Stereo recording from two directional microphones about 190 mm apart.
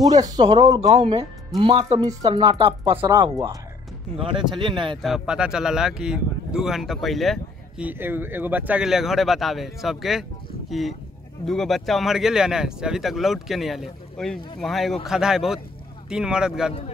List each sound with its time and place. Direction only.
0.1 s speech: 20° right (ahead or behind)
0.8 s speech: 30° right (ahead or behind)
5.0 s speech: 5° right (ahead or behind)